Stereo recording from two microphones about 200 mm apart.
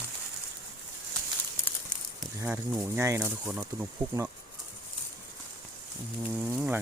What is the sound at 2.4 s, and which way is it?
Speech, 10° right (ahead or behind).